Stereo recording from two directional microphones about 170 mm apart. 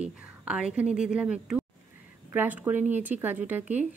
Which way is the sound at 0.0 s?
5° right (ahead or behind).